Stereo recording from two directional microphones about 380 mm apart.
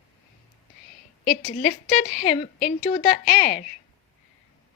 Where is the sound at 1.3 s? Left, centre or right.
Centre.